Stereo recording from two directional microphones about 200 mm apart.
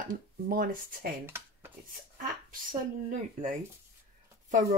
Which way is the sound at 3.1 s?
40° right (ahead or behind).